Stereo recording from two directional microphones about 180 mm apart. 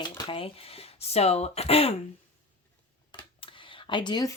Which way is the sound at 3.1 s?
25° left (ahead or behind).